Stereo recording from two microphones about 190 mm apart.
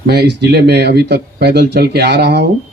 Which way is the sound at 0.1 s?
60° right (ahead or behind).